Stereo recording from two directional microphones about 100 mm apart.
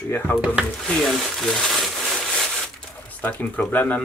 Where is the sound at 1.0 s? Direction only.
5° left (ahead or behind).